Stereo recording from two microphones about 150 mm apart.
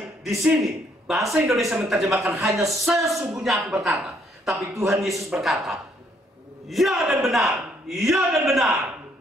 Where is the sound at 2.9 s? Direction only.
Centre (ahead or behind).